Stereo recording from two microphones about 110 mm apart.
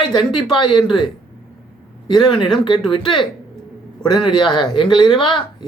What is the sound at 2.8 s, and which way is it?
Speech, 50° left (ahead or behind).